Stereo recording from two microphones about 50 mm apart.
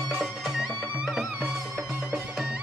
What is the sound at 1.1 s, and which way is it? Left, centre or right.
Music, centre.